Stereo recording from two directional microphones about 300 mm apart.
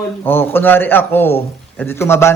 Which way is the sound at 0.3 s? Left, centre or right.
Centre.